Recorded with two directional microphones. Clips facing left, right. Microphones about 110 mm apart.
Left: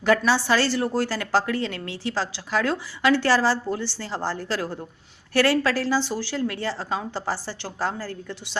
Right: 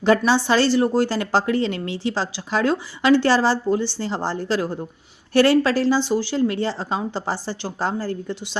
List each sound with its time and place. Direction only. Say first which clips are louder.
0.0 s a woman's voice: right 3 dB; 20° right (ahead or behind)